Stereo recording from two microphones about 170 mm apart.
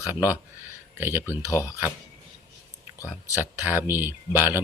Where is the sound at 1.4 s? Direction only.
20° left (ahead or behind).